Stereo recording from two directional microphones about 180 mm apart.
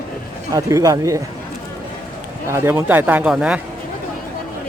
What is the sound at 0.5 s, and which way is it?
Speech, 20° right (ahead or behind).